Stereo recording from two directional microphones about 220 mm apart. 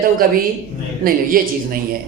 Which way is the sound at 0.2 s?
40° right (ahead or behind).